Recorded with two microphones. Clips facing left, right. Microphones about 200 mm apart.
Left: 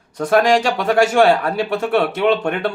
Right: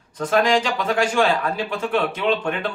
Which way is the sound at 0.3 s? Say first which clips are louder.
Left 4 dB; 65° left (ahead or behind).